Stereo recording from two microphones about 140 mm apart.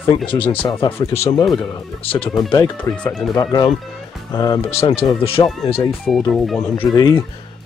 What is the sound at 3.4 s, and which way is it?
Speech, 30° left (ahead or behind).